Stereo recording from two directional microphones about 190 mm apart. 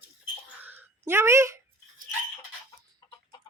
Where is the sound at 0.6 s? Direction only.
10° right (ahead or behind).